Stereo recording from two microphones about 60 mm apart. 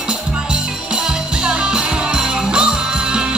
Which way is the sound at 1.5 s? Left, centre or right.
Centre.